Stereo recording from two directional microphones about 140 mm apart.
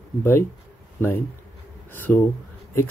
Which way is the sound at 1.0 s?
15° left (ahead or behind).